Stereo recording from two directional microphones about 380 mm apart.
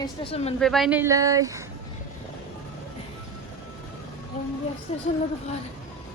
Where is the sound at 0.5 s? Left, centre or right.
Centre.